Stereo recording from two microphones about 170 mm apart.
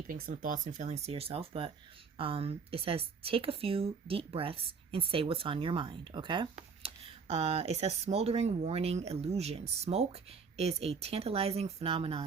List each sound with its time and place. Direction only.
0.1 s speech: 55° right (ahead or behind); by 12.2 s 35° right (ahead or behind)